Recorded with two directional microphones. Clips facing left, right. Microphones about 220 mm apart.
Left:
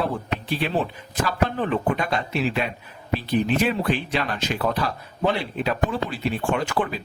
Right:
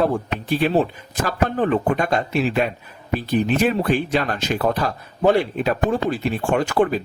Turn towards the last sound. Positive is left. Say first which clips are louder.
# right 5 dB
turn(degrees=-45)  # may be behind; listen again after turning